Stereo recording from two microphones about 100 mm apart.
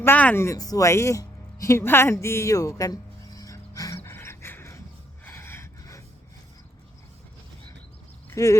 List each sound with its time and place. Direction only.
0.0 s speech: 20° left (ahead or behind)
0.4 s a sound: 35° left (ahead or behind)
5.2 s gasp: 25° left (ahead or behind)
8.4 s speech: 30° left (ahead or behind)